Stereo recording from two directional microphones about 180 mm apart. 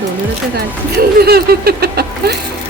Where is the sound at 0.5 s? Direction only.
60° right (ahead or behind).